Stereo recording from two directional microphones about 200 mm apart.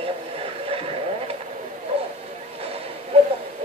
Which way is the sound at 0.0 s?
30° right (ahead or behind).